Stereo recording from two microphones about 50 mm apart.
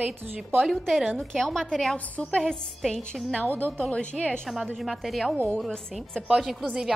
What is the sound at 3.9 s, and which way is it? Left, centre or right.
Speech, left.